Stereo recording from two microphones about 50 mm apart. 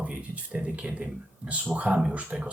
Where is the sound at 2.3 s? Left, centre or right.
Centre.